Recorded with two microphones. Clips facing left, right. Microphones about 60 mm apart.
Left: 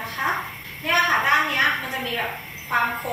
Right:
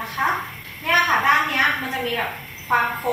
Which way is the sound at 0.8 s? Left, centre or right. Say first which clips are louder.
Right 2 dB; centre.